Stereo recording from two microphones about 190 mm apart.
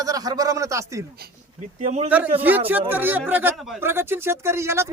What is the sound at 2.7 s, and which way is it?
Speech, 10° right (ahead or behind).